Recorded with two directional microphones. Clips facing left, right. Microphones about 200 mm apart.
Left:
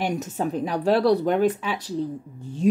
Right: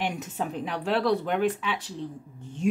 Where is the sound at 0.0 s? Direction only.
40° left (ahead or behind).